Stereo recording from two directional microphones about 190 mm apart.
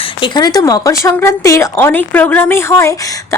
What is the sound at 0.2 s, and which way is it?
A woman's voice, 20° left (ahead or behind).